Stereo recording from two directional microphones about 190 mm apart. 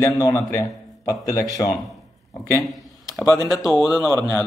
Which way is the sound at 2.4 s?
15° left (ahead or behind).